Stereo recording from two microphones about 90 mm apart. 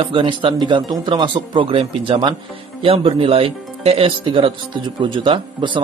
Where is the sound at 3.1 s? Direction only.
90° right.